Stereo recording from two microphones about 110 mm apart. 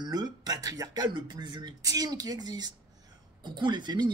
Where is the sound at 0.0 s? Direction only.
40° right (ahead or behind).